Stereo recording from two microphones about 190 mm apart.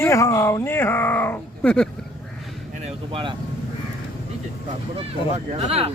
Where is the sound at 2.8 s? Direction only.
30° right (ahead or behind).